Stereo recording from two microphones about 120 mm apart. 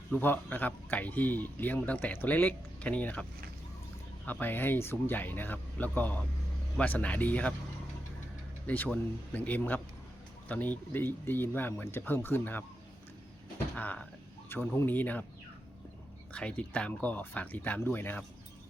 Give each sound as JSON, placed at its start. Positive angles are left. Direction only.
{"t": 0.2, "sound": "a man's voice", "side_deg": 15}
{"t": 4.3, "sound": "a man's voice", "side_deg": 15}
{"t": 8.6, "sound": "a man's voice", "side_deg": 15}
{"t": 13.7, "sound": "a man's voice", "side_deg": 15}
{"t": 16.3, "sound": "a man's voice", "side_deg": 10}